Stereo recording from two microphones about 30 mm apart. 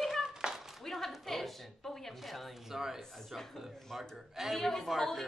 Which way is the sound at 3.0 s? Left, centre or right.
Centre.